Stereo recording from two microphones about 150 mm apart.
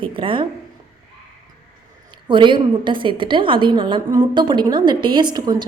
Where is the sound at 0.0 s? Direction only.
35° right (ahead or behind).